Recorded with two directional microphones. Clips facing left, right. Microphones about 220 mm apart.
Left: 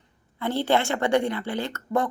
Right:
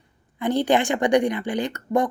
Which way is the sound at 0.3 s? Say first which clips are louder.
Right 3 dB; 15° right (ahead or behind).